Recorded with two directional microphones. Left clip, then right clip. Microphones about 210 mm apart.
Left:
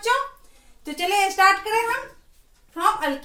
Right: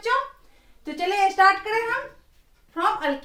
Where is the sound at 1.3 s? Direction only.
15° right (ahead or behind).